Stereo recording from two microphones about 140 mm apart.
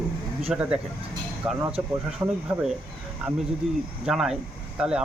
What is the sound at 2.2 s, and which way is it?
Speech, 25° right (ahead or behind).